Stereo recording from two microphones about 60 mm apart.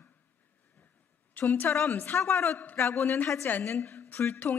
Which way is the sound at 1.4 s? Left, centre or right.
Left.